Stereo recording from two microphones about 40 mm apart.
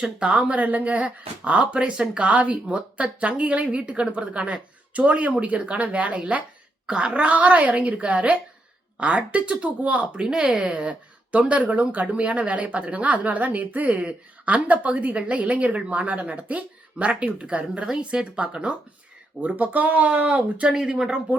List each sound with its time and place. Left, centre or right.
0.0 s speech: right
0.3 s a woman's voice: right
2.2 s a woman's voice: right
10.2 s speech: right
10.4 s a woman's voice: right
14.0 s a woman's voice: right
14.5 s a woman's voice: right
19.4 s speech: right
20.7 s speech: centre